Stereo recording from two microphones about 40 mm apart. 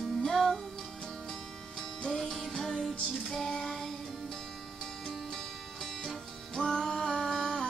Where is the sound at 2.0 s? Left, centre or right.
Centre.